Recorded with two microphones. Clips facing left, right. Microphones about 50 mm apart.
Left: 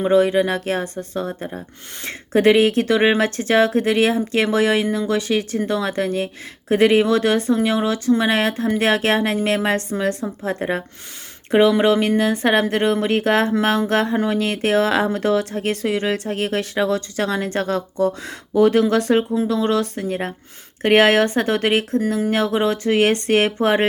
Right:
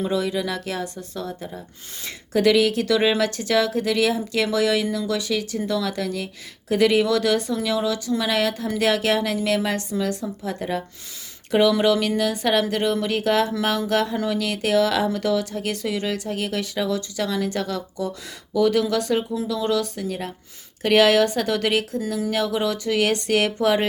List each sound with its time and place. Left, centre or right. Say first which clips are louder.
0.0 s speech: left 8 dB; left